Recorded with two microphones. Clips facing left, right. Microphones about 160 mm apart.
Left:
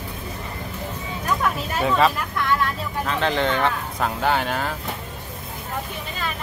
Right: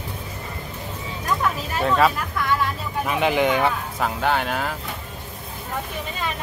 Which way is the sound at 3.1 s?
15° right (ahead or behind).